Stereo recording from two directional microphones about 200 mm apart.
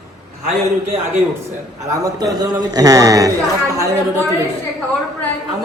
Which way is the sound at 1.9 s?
20° right (ahead or behind).